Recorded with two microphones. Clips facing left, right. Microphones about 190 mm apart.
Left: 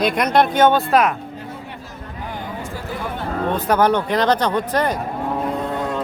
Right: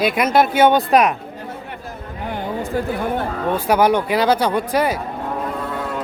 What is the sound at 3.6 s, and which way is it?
Speech, 10° right (ahead or behind).